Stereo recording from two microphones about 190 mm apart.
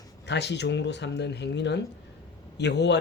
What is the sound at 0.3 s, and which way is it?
Speech, 65° left (ahead or behind).